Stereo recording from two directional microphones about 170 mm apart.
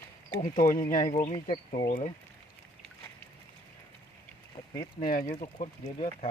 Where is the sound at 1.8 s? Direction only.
55° left (ahead or behind).